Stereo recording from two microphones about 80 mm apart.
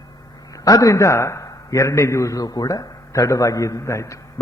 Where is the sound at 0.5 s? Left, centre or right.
Left.